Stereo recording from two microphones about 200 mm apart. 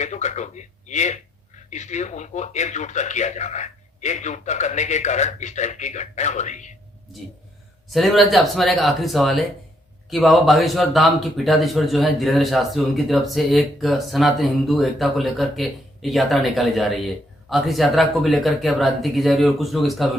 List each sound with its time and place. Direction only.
0.0 s speech: 35° left (ahead or behind)
7.9 s speech: centre (ahead or behind)